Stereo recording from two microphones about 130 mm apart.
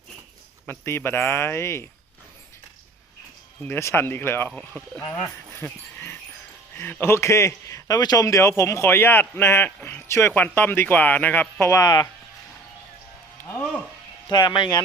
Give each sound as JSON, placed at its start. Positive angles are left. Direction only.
{"t": 0.7, "sound": "a man's voice", "side_deg": 20}
{"t": 3.6, "sound": "a man's voice", "side_deg": 20}
{"t": 14.3, "sound": "speech", "side_deg": 35}